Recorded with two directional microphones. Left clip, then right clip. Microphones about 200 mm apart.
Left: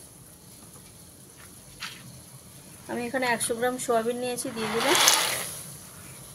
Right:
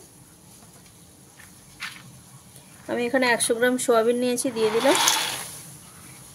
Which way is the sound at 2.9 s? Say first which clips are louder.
Right 6 dB; 55° right (ahead or behind).